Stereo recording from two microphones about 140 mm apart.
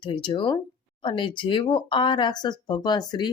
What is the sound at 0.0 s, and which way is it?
Speech, 35° left (ahead or behind).